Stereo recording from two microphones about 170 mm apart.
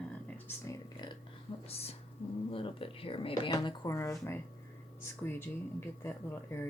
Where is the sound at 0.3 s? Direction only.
15° left (ahead or behind).